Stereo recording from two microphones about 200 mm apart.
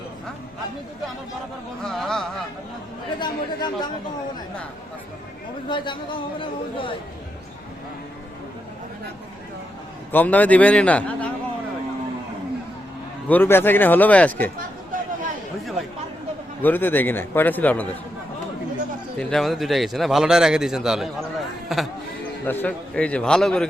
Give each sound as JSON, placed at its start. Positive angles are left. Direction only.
{"t": 1.8, "sound": "a man's voice", "side_deg": 0}
{"t": 3.2, "sound": "speech", "side_deg": 20}
{"t": 5.6, "sound": "speech", "side_deg": 25}
{"t": 10.1, "sound": "speech", "side_deg": 10}
{"t": 13.2, "sound": "speech", "side_deg": 10}
{"t": 16.6, "sound": "speech", "side_deg": 10}
{"t": 19.2, "sound": "a man's voice", "side_deg": 0}